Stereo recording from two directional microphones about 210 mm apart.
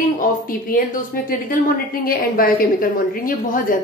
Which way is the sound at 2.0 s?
45° left (ahead or behind).